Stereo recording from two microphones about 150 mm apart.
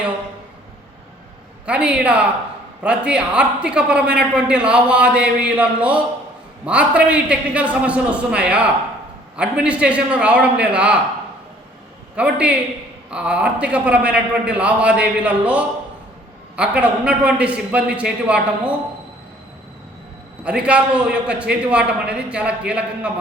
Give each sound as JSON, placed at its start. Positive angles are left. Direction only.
{"t": 1.6, "sound": "a man's voice", "side_deg": -10}
{"t": 12.1, "sound": "a man's voice", "side_deg": -10}
{"t": 20.4, "sound": "a man's voice", "side_deg": -10}